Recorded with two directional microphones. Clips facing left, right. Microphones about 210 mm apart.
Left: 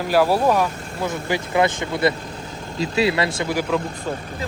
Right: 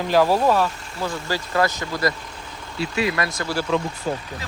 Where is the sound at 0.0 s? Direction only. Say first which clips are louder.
Even; 10° left (ahead or behind); by 3.5 s 25° left (ahead or behind).